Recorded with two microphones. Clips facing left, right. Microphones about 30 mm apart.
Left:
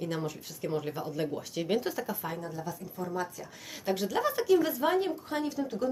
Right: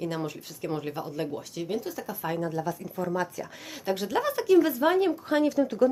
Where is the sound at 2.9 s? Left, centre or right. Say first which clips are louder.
Right 4 dB; right.